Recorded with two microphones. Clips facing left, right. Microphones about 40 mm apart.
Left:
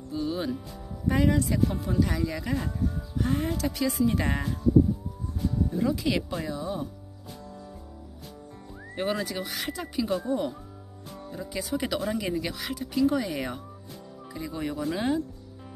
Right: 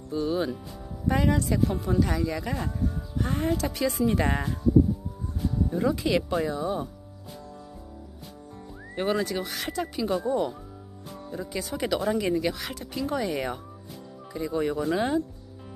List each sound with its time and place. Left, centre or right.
0.1 s speech: centre
5.7 s speech: centre
8.9 s speech: centre